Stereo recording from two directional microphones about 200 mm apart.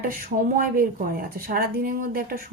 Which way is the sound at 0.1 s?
45° right (ahead or behind).